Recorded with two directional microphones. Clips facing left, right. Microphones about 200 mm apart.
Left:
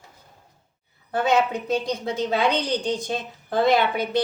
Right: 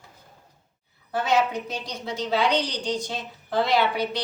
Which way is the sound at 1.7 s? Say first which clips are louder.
Left 8 dB; 55° left (ahead or behind).